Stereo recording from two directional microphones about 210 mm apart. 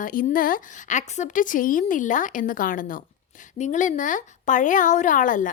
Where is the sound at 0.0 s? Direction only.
40° left (ahead or behind).